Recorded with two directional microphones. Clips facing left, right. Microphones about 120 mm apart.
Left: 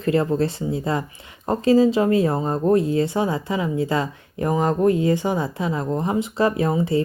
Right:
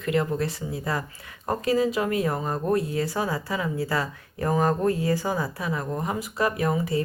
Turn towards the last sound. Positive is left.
turn(degrees=25)  # may be behind; listen again after turning